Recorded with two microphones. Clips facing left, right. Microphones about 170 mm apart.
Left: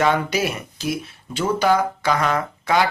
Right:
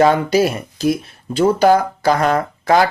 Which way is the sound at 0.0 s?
35° right (ahead or behind).